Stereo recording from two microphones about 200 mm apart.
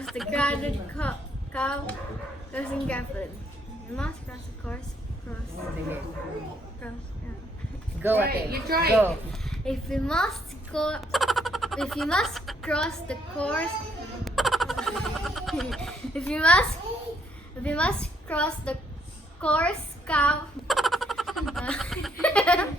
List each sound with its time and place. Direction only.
0.0 s a woman's voice: centre (ahead or behind)
8.0 s a woman's voice: 10° right (ahead or behind)
8.3 s a woman's voice: 50° right (ahead or behind)
9.3 s a child's voice: centre (ahead or behind)
14.3 s a sound: centre (ahead or behind)
17.6 s a woman's voice: 5° left (ahead or behind)
19.4 s a sound: 5° left (ahead or behind)